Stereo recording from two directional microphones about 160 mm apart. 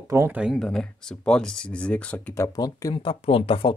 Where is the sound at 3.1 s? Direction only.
35° left (ahead or behind).